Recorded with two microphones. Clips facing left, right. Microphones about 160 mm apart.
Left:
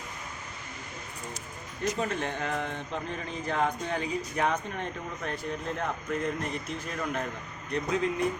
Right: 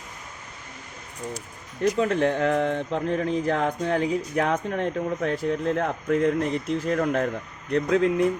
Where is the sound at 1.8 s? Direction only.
75° right (ahead or behind).